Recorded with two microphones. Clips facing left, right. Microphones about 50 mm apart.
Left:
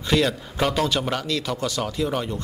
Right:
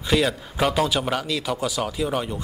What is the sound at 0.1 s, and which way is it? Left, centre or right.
A man's voice, centre.